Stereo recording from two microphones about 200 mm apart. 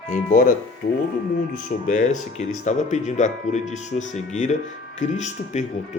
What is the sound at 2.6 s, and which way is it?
Speech, 35° left (ahead or behind).